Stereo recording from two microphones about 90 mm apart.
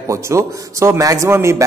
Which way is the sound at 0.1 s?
35° right (ahead or behind).